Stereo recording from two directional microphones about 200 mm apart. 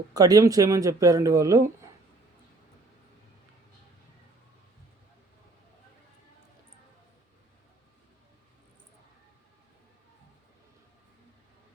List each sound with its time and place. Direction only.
0.1 s speech: 20° right (ahead or behind)